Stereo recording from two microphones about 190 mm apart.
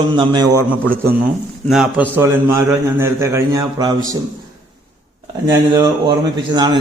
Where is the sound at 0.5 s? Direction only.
10° left (ahead or behind).